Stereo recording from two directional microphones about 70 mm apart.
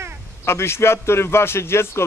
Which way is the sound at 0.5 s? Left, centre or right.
Left.